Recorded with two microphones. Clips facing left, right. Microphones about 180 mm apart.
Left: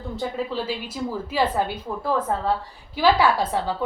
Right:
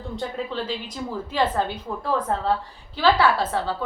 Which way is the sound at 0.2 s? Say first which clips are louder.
Left 2 dB; 5° left (ahead or behind).